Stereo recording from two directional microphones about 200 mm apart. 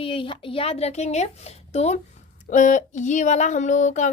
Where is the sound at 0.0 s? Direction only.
25° left (ahead or behind).